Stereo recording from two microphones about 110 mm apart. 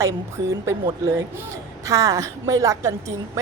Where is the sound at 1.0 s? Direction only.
25° right (ahead or behind).